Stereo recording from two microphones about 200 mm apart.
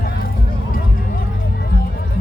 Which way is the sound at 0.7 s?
45° left (ahead or behind).